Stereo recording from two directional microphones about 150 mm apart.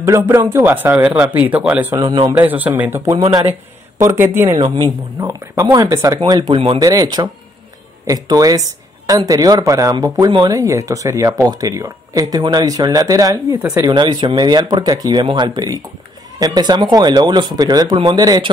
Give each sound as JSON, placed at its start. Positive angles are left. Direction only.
{"t": 0.0, "sound": "a man's voice", "side_deg": -20}
{"t": 2.0, "sound": "a woman's voice", "side_deg": -25}
{"t": 2.3, "sound": "a man's voice", "side_deg": -10}
{"t": 6.5, "sound": "speech", "side_deg": -40}
{"t": 6.8, "sound": "a woman's voice", "side_deg": -25}